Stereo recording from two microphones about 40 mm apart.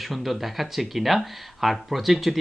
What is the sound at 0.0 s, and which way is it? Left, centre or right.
Speech, centre.